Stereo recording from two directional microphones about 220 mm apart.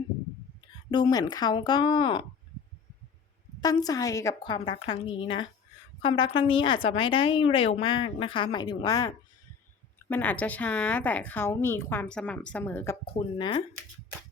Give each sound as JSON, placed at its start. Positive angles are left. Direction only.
{"t": 0.9, "sound": "a woman's voice", "side_deg": 20}
{"t": 3.6, "sound": "a woman's voice", "side_deg": 15}